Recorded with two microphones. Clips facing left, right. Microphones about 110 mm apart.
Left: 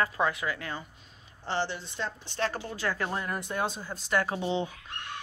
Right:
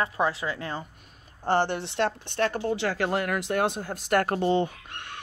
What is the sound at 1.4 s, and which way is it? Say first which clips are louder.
Speech: right 7 dB; 50° right (ahead or behind).